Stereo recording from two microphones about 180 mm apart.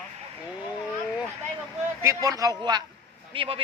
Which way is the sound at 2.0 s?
15° right (ahead or behind).